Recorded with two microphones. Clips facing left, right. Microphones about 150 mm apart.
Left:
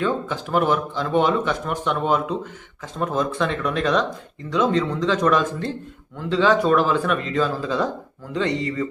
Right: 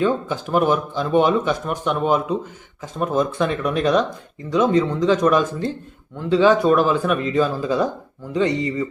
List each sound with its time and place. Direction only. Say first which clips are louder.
0.0 s speech: right 3 dB; 20° right (ahead or behind)
6.3 s speech: right 3 dB; 15° right (ahead or behind)